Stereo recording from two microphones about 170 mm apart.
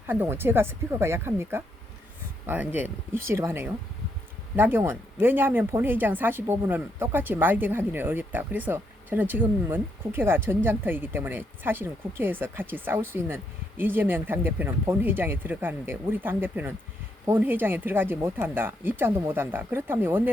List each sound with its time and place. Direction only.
0.1 s speech: 10° right (ahead or behind)